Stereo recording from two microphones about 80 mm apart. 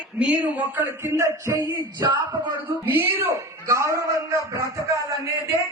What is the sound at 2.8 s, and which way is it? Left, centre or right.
A man's voice, right.